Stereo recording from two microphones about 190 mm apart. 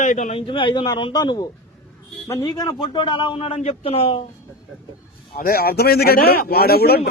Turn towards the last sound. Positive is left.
turn(degrees=55)  # may be behind; listen again after turning